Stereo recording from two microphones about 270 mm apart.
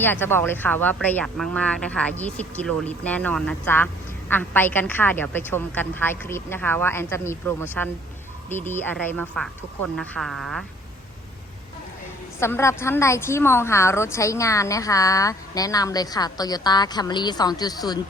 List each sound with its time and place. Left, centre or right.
0.0 s a woman's voice: centre
12.4 s a woman's voice: centre